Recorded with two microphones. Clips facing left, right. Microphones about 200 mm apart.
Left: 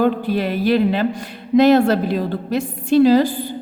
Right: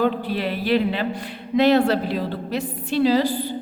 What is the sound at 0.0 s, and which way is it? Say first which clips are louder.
A woman's voice: left 4 dB; 45° left (ahead or behind).